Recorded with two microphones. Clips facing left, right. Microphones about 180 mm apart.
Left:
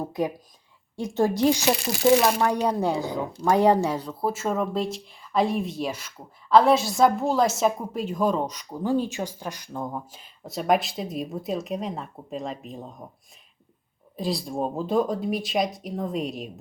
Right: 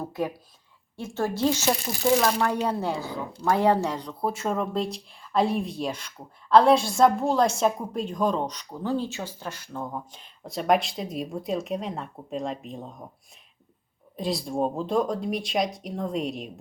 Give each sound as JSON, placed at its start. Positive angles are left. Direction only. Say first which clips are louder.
{"t": 0.0, "sound": "a woman's voice", "louder": "left 2 dB", "side_deg": 15}
{"t": 1.8, "sound": "speech", "louder": "left 5 dB", "side_deg": 80}
{"t": 2.2, "sound": "speech", "louder": "left 2 dB", "side_deg": 15}
{"t": 14.2, "sound": "speech", "louder": "right 1 dB", "side_deg": 0}